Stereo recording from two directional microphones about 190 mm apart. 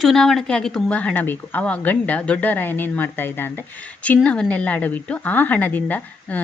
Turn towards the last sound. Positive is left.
turn(degrees=10)  # may be behind; listen again after turning